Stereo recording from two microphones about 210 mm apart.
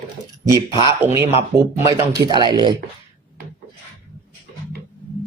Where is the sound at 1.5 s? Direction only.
15° right (ahead or behind).